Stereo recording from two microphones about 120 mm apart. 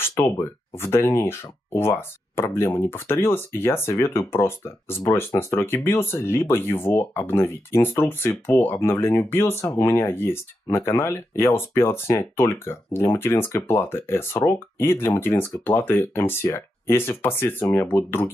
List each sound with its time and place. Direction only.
0.1 s speech: 20° left (ahead or behind)